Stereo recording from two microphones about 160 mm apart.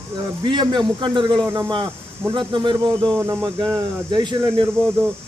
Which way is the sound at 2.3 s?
30° right (ahead or behind).